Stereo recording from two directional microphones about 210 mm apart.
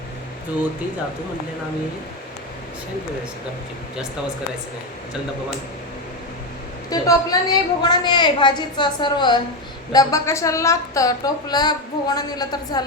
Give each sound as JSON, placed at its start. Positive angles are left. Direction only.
{"t": 6.9, "sound": "a woman's voice", "side_deg": 15}